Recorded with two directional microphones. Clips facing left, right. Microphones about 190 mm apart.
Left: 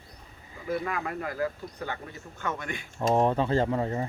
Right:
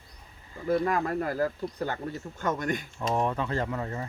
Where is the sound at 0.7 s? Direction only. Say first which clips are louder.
Right 5 dB; 40° right (ahead or behind).